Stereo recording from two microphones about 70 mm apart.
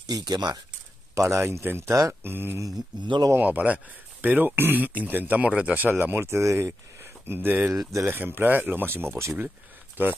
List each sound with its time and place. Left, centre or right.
0.0 s speech: right
1.1 s speech: right
1.4 s speech: right; by 5.9 s centre
5.9 s speech: right